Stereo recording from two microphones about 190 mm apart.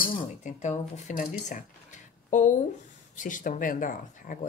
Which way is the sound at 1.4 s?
40° left (ahead or behind).